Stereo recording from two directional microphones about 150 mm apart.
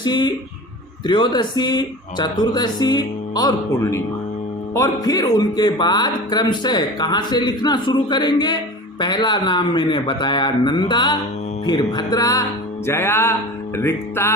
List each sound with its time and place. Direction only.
0.0 s speech: 30° left (ahead or behind)
13.7 s music: 15° left (ahead or behind)